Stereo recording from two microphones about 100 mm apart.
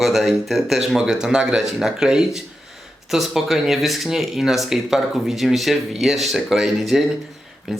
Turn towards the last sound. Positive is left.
turn(degrees=-5)  # may be behind; listen again after turning